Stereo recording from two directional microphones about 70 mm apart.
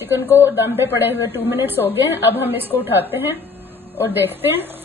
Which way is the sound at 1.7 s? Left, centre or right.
Right.